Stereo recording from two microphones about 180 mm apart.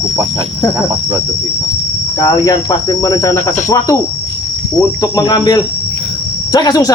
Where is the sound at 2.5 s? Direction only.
20° left (ahead or behind).